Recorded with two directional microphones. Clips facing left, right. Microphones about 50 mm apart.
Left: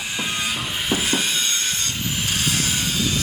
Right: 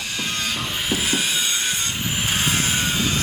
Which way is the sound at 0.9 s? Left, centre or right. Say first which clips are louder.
Left 1 dB; centre.